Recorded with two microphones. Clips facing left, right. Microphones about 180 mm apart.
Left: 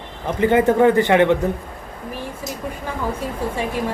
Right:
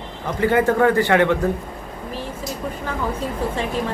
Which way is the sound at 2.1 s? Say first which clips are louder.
Even; 15° left (ahead or behind).